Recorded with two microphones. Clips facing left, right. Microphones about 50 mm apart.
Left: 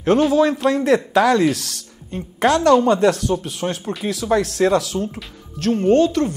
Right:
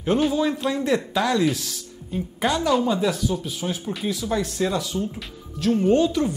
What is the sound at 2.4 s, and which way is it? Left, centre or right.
Speech, left.